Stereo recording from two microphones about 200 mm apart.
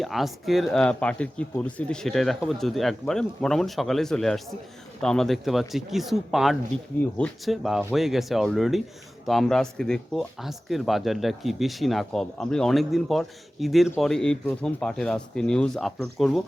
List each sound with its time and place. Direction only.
0.0 s speech: centre (ahead or behind)